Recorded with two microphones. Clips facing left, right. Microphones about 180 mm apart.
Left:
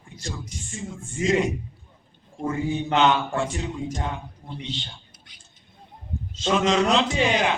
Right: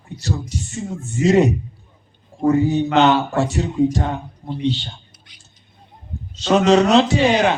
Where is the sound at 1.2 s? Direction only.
40° right (ahead or behind).